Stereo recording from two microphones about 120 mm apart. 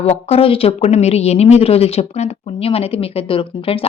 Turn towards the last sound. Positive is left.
turn(degrees=50)  # may be behind; listen again after turning